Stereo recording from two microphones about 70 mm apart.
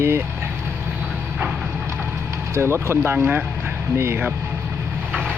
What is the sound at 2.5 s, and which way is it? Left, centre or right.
Speech, right.